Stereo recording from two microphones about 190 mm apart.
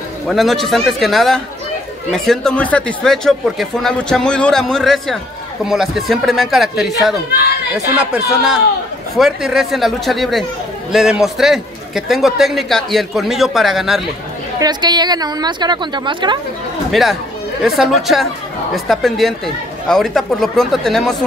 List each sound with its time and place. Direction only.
0.3 s a man's voice: centre (ahead or behind)
8.0 s a man's voice: 5° right (ahead or behind)
14.6 s a woman's voice: 20° right (ahead or behind)
16.9 s a man's voice: centre (ahead or behind)